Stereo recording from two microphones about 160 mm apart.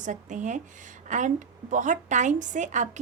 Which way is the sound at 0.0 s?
50° right (ahead or behind).